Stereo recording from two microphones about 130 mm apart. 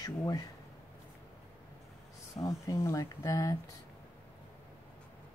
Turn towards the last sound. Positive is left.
turn(degrees=25)  # may be behind; listen again after turning